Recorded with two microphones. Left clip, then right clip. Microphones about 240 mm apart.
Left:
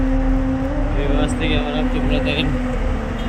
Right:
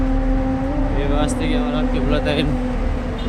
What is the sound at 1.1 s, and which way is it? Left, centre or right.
Speech, centre.